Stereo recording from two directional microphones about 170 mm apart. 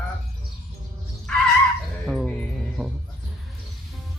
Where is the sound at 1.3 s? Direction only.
5° left (ahead or behind).